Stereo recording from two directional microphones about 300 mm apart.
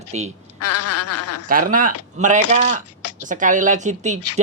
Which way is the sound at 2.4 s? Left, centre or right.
Left.